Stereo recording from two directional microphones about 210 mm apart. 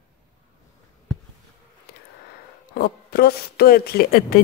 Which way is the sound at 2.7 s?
50° left (ahead or behind).